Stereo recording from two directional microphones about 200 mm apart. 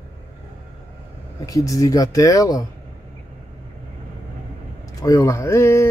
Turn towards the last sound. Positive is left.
turn(degrees=15)  # may be behind; listen again after turning